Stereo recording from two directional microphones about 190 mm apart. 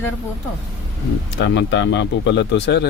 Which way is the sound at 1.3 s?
70° left (ahead or behind).